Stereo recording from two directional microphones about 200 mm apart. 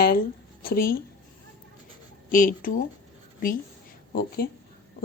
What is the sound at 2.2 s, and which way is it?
Speech, 45° left (ahead or behind).